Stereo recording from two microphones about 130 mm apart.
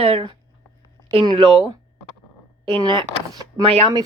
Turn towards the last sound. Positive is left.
turn(degrees=-45)  # may be behind; listen again after turning